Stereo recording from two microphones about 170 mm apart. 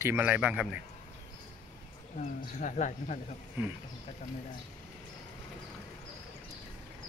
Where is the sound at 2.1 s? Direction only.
45° left (ahead or behind).